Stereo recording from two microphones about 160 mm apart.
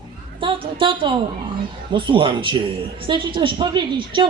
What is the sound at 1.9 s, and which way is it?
A woman's voice, 30° right (ahead or behind).